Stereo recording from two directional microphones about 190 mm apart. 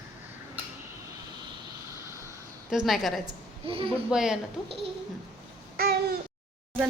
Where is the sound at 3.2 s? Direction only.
30° right (ahead or behind).